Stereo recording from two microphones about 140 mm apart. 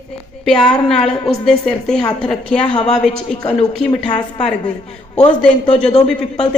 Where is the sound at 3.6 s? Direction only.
30° left (ahead or behind).